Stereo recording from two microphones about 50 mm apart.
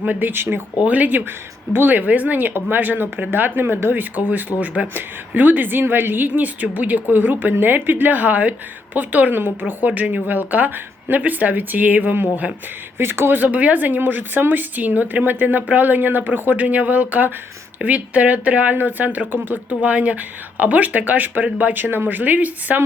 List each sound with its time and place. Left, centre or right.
0.1 s speech: right
13.0 s speech: right
13.4 s speech: right